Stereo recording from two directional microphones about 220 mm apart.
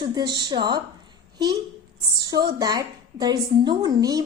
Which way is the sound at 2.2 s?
15° right (ahead or behind).